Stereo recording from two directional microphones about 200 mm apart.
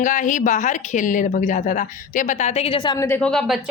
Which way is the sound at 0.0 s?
40° left (ahead or behind).